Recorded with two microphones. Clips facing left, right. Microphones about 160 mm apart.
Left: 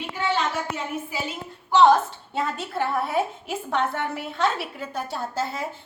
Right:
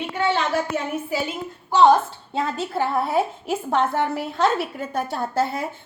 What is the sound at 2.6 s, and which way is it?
A woman's voice, 30° right (ahead or behind).